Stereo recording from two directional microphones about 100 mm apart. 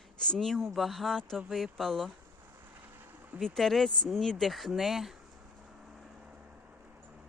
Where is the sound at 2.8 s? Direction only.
20° right (ahead or behind).